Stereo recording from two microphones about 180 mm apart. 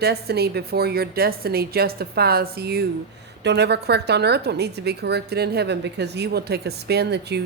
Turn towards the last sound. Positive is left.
turn(degrees=-70)  # may be behind; listen again after turning